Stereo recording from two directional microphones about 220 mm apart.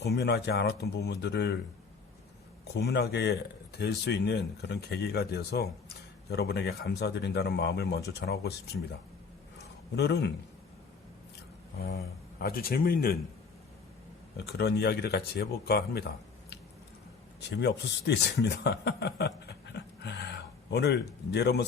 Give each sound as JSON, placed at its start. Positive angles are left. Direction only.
{"t": 0.0, "sound": "speech", "side_deg": 50}
{"t": 2.7, "sound": "speech", "side_deg": 50}
{"t": 12.4, "sound": "speech", "side_deg": 45}
{"t": 14.3, "sound": "speech", "side_deg": 50}
{"t": 17.6, "sound": "a man's voice", "side_deg": 50}